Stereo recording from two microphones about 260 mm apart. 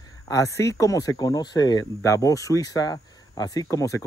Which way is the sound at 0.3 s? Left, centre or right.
Centre.